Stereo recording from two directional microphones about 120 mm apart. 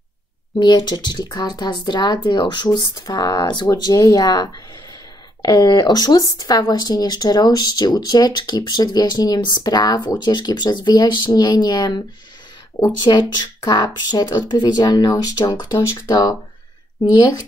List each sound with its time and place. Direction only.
0.6 s speech: 40° left (ahead or behind)